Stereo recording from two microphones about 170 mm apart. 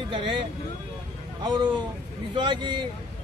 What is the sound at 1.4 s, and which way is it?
Speech, 25° right (ahead or behind).